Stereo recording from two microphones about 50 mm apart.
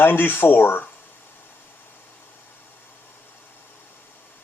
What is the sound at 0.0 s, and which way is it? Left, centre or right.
Speech, left.